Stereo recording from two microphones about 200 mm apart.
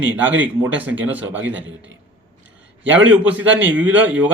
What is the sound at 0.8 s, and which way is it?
Speech, 10° right (ahead or behind).